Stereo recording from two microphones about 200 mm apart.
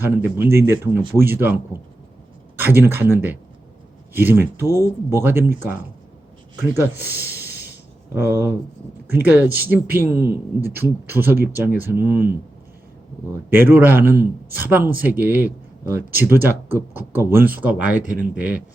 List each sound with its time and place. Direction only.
0.5 s speech: 10° right (ahead or behind)
6.7 s speech: 10° right (ahead or behind)
13.5 s speech: 10° right (ahead or behind)
18.0 s speech: 40° right (ahead or behind)
18.3 s speech: 10° right (ahead or behind)